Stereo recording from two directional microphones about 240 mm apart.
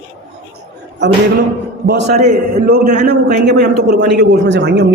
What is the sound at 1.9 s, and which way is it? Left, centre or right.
A man's voice, right.